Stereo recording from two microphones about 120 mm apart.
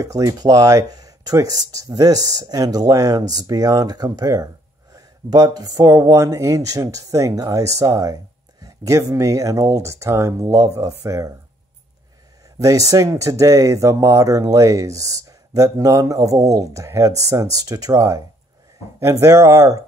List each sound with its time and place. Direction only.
0.0 s speech: 30° right (ahead or behind)
12.5 s speech: 30° right (ahead or behind)